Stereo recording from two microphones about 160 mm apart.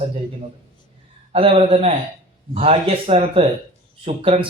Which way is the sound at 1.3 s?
35° right (ahead or behind).